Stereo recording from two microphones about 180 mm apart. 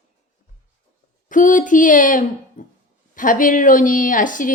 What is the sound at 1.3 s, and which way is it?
A woman's voice, 45° left (ahead or behind).